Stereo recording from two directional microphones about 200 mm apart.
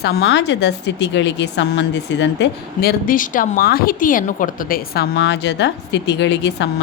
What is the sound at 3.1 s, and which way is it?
A woman's voice, 45° left (ahead or behind).